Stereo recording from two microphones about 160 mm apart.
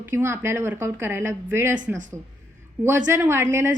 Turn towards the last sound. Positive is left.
turn(degrees=-15)  # may be behind; listen again after turning